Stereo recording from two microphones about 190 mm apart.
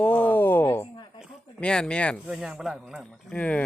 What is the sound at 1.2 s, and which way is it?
Speech, 5° left (ahead or behind).